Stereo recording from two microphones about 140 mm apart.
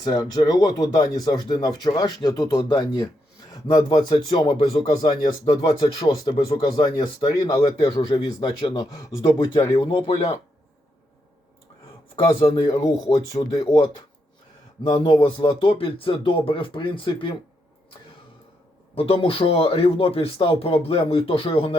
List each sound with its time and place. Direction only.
0.0 s speech: 30° left (ahead or behind)
9.7 s speech: 40° left (ahead or behind)
12.4 s speech: 30° left (ahead or behind)
14.8 s speech: 30° left (ahead or behind)
18.9 s speech: 40° left (ahead or behind)